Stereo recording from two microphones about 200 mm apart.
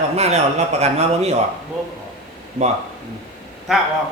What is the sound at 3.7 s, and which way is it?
Speech, centre (ahead or behind).